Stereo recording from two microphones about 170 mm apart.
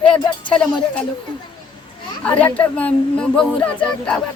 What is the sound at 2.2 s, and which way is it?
Speech, 10° left (ahead or behind).